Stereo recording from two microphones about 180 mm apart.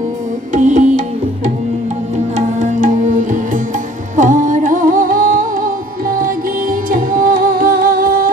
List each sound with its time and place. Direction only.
0.6 s music: 40° right (ahead or behind)
2.3 s music: 40° right (ahead or behind)